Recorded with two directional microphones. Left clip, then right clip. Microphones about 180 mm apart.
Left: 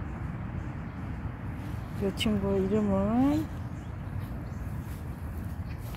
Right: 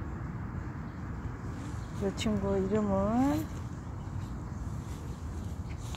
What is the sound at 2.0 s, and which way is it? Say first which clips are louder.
Speech: left 3 dB; 15° left (ahead or behind).